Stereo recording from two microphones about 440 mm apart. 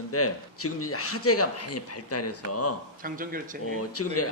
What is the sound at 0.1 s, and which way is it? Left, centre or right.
A man's voice, left.